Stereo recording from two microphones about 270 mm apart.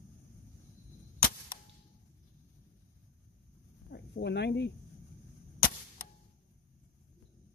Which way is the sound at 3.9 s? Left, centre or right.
Left.